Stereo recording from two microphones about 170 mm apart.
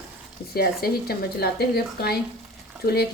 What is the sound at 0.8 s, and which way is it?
Speech, 65° left (ahead or behind).